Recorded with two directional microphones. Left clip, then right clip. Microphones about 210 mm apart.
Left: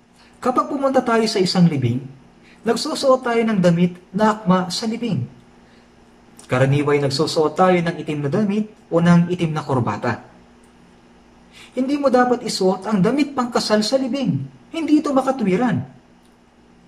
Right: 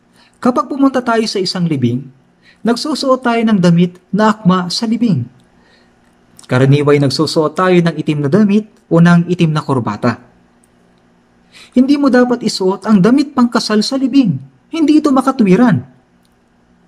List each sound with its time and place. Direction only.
0.4 s speech: 45° right (ahead or behind)
6.4 s speech: 50° right (ahead or behind)
11.5 s speech: 50° right (ahead or behind)